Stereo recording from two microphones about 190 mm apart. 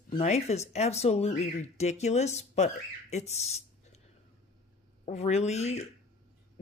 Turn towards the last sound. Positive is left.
turn(degrees=35)  # may be behind; listen again after turning